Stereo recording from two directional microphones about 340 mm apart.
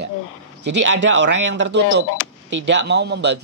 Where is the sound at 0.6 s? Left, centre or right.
Right.